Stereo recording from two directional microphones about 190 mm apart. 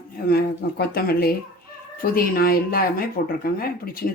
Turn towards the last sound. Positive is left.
turn(degrees=50)  # may be behind; listen again after turning